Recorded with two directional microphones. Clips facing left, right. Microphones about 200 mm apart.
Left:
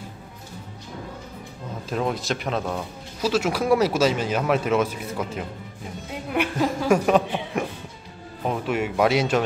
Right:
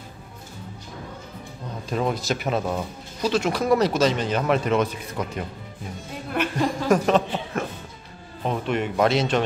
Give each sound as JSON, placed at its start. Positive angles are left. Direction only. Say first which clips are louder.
{"t": 1.9, "sound": "speech", "louder": "right 1 dB", "side_deg": 0}